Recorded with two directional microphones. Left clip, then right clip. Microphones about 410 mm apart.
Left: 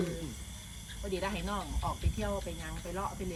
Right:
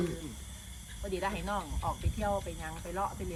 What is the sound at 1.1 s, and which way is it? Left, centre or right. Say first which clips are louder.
Speech: right 2 dB; centre.